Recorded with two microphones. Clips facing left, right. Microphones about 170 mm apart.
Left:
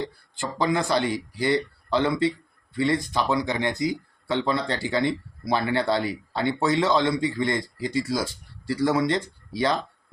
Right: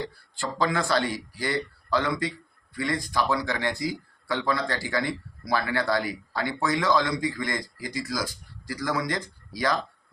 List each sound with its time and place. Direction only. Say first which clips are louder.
0.3 s speech: left 2 dB; 20° left (ahead or behind)